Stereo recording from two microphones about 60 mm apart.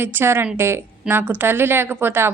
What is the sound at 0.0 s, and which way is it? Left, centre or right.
A woman's voice, right.